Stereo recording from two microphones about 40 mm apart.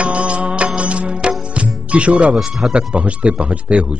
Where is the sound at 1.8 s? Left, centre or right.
Right.